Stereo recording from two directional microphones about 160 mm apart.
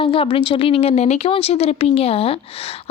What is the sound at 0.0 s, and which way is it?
Speech, 35° left (ahead or behind).